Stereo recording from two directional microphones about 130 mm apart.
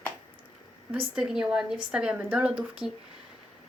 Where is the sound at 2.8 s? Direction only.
35° left (ahead or behind).